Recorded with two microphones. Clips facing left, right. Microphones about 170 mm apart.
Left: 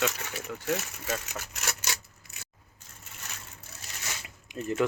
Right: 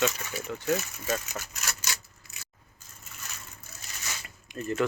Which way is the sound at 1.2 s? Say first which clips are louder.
Left 1 dB; 65° left (ahead or behind).